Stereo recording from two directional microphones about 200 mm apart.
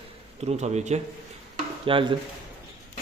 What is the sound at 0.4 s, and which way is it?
A man's voice, 35° right (ahead or behind).